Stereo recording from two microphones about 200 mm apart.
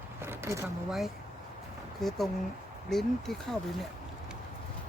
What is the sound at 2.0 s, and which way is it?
Speech, centre (ahead or behind).